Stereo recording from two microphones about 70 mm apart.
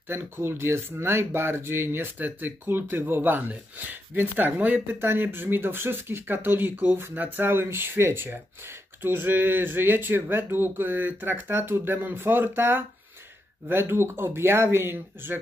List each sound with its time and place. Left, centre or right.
0.4 s speech: right